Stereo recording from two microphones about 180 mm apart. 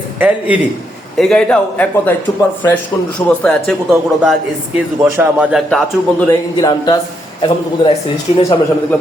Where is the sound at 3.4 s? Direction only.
5° left (ahead or behind).